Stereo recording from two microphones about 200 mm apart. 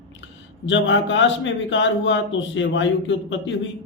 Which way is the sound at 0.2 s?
65° left (ahead or behind).